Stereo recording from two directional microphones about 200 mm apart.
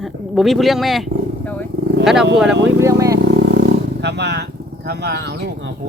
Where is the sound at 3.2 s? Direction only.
60° right (ahead or behind).